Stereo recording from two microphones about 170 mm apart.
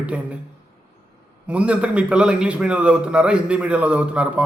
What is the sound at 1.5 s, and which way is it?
A man's voice, 5° right (ahead or behind).